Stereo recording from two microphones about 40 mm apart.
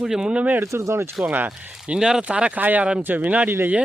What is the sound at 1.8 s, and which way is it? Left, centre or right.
Speech, right.